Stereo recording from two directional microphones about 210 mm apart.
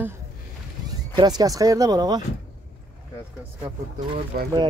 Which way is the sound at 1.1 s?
20° right (ahead or behind).